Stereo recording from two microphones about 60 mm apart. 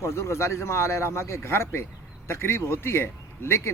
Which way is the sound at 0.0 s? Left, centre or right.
Left.